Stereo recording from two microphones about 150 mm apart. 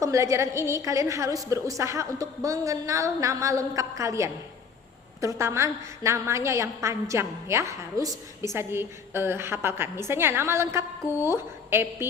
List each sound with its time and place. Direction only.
0.0 s a woman's voice: 20° right (ahead or behind)